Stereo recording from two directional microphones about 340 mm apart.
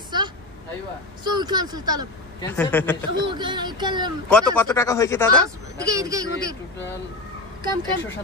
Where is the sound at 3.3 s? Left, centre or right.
Centre.